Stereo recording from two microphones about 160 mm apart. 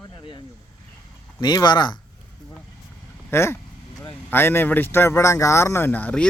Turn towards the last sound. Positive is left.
turn(degrees=10)  # may be behind; listen again after turning